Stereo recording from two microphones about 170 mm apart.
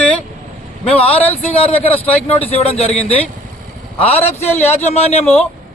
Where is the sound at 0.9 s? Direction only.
35° left (ahead or behind).